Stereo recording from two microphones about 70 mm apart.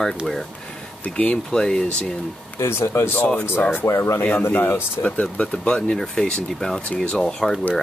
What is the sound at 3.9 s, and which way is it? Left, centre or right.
Speech, left.